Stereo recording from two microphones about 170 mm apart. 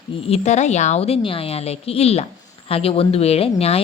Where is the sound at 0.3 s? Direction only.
40° left (ahead or behind).